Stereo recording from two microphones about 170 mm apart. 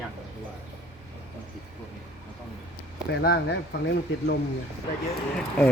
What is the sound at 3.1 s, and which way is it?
Speech, 70° left (ahead or behind).